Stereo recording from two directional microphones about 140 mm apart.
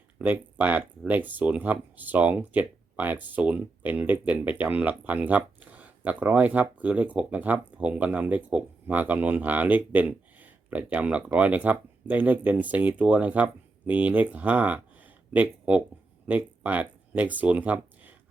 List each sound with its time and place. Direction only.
0.2 s speech: 10° right (ahead or behind)